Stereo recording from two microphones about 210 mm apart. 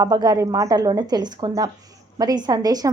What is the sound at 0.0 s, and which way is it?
A woman's voice, 20° right (ahead or behind).